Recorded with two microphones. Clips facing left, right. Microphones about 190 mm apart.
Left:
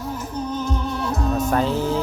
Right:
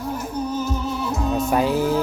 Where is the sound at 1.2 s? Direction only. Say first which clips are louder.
Right 1 dB; centre (ahead or behind).